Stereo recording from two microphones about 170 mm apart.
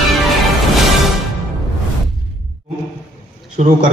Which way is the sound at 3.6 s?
45° right (ahead or behind).